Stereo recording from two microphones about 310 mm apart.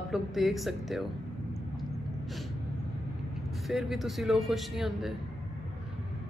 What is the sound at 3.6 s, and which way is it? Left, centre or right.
Speech, centre.